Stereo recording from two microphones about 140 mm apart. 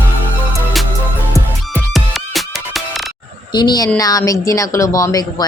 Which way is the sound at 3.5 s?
30° left (ahead or behind).